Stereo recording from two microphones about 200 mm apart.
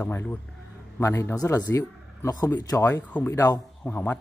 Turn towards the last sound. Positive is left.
turn(degrees=10)  # may be behind; listen again after turning